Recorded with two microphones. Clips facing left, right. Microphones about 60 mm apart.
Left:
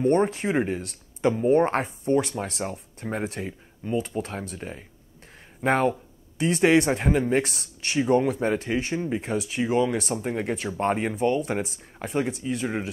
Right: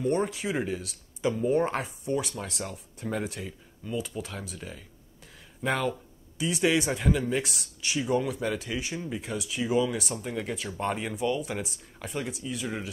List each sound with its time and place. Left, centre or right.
0.0 s speech: left